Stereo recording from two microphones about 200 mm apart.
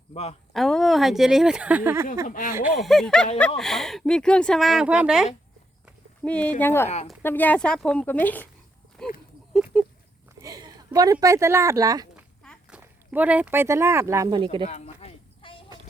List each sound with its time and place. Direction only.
0.1 s speech: 30° left (ahead or behind)
0.5 s speech: centre (ahead or behind)
2.2 s speech: 40° left (ahead or behind)
2.6 s speech: centre (ahead or behind)
6.8 s speech: 35° left (ahead or behind)
7.2 s speech: 10° left (ahead or behind)
9.0 s a sound: 5° left (ahead or behind)
9.7 s a sound: 5° right (ahead or behind)
10.4 s a woman's voice: 20° right (ahead or behind)
12.4 s speech: centre (ahead or behind); by 14.7 s 25° right (ahead or behind)
14.7 s a sound: 30° left (ahead or behind)